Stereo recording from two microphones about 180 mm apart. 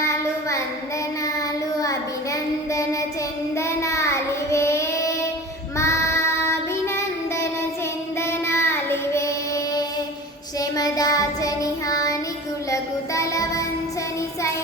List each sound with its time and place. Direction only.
3.6 s child singing: 15° left (ahead or behind)
8.3 s child singing: 15° left (ahead or behind)
10.6 s child singing: 20° left (ahead or behind)